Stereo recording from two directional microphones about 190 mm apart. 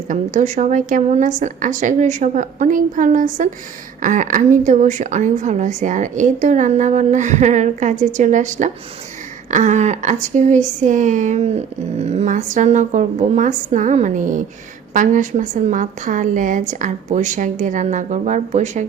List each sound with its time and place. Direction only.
0.1 s speech: 40° right (ahead or behind)